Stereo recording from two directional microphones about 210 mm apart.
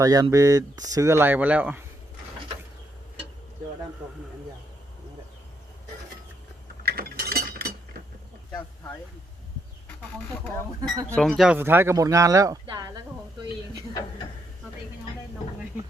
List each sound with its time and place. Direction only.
0.0 s speech: 15° right (ahead or behind)
6.8 s chink: 45° right (ahead or behind)
11.1 s speech: centre (ahead or behind); by 12.9 s 20° right (ahead or behind)